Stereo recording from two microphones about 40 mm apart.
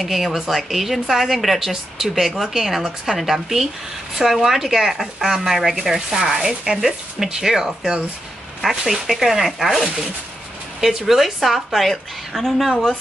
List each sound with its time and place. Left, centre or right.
0.0 s a woman's voice: centre
5.8 s a woman's voice: centre
10.8 s a woman's voice: centre